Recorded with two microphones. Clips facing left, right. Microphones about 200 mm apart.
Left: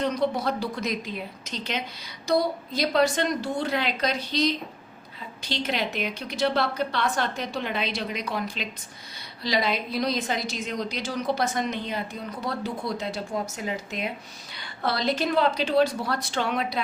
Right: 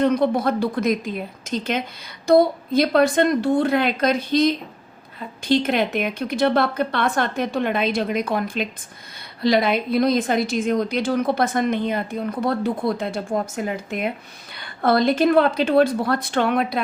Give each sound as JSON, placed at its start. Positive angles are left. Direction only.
{"t": 0.0, "sound": "a woman's voice", "side_deg": -55}